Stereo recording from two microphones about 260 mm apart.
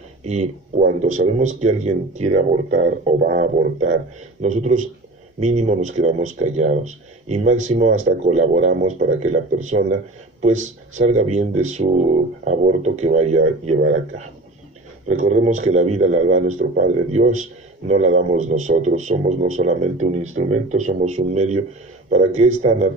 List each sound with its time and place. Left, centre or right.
0.2 s speech: right